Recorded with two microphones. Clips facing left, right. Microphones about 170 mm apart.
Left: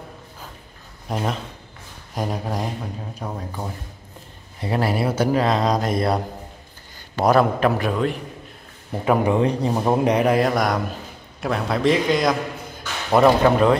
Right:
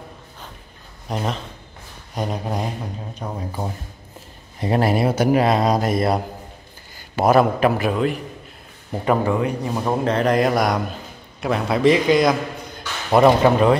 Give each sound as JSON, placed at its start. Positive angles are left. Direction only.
{"t": 1.0, "sound": "speech", "side_deg": 0}
{"t": 4.8, "sound": "speech", "side_deg": -20}
{"t": 9.4, "sound": "a man's voice", "side_deg": 30}